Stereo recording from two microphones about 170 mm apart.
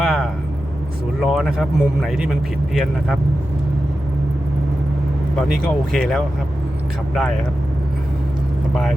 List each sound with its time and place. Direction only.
0.0 s vehicle: centre (ahead or behind)
1.2 s a man's voice: 5° right (ahead or behind)
5.9 s a man's voice: centre (ahead or behind)